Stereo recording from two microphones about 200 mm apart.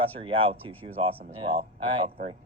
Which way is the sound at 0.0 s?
25° right (ahead or behind).